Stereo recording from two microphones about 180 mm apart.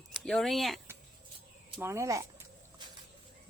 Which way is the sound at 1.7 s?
15° right (ahead or behind).